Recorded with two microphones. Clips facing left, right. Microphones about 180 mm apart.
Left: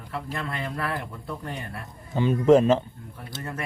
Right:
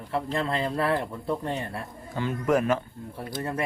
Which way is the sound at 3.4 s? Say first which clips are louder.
Right 4 dB; 30° right (ahead or behind).